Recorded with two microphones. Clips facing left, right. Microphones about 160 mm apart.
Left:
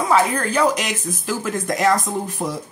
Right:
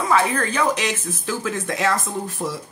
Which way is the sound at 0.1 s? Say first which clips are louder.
Left 2 dB; 10° left (ahead or behind).